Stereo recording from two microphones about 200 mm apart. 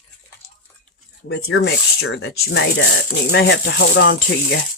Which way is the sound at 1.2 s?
55° left (ahead or behind).